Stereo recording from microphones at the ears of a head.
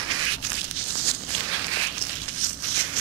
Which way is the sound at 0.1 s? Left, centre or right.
Right.